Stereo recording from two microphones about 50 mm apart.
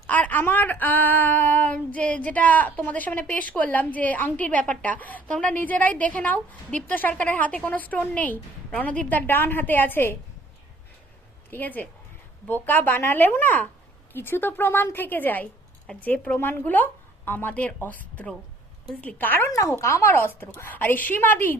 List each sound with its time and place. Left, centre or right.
0.1 s a sound: left
0.4 s female singing: left
3.6 s a woman's voice: left
5.3 s speech: centre
5.5 s a woman's voice: left
6.7 s a woman's voice: left
11.5 s a woman's voice: left
14.1 s a woman's voice: left
16.4 s speech: left
17.5 s a woman's voice: left
19.5 s speech: left
19.8 s speech: left
20.1 s a woman's voice: left